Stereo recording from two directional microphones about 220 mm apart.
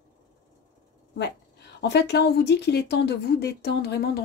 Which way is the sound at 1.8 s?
50° left (ahead or behind).